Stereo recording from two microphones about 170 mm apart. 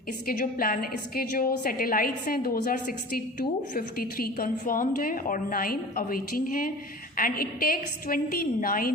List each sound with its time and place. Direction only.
0.3 s a woman's voice: 55° left (ahead or behind)